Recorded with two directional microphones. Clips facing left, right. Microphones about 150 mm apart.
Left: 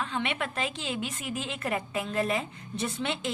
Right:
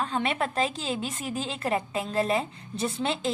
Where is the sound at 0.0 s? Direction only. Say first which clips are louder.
Right 4 dB; 35° right (ahead or behind).